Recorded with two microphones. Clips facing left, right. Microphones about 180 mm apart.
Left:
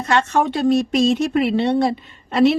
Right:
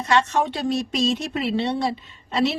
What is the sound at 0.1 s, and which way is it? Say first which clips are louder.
A woman's voice: left 3 dB; 50° left (ahead or behind).